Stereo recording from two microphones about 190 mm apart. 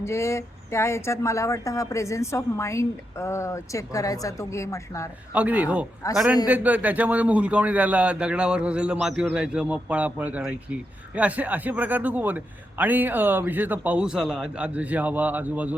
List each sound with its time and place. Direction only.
0.0 s speech: 15° left (ahead or behind)
5.3 s a man's voice: 10° right (ahead or behind)
6.0 s speech: 15° left (ahead or behind)
6.5 s a man's voice: 10° right (ahead or behind)